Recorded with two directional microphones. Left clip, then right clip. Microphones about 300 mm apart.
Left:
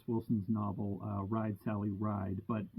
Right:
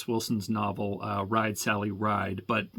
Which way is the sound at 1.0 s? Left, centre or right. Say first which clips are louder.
Right 12 dB; centre.